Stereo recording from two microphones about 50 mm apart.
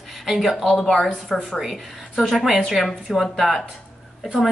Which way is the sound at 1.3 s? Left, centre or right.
Centre.